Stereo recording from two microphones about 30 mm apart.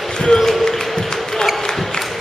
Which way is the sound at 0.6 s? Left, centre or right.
Centre.